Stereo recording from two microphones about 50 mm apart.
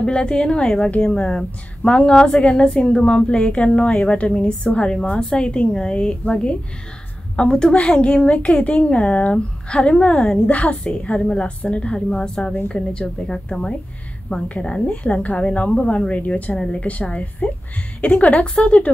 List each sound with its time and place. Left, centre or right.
0.0 s a woman's voice: centre
0.8 s a woman's voice: left
10.5 s a woman's voice: left